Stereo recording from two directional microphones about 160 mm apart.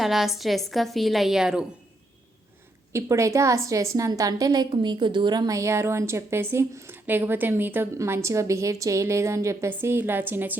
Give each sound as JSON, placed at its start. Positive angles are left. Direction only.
{"t": 0.0, "sound": "a woman's voice", "side_deg": 0}
{"t": 2.9, "sound": "a woman's voice", "side_deg": -20}